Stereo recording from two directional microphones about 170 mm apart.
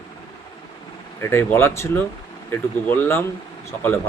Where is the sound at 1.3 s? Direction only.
15° left (ahead or behind).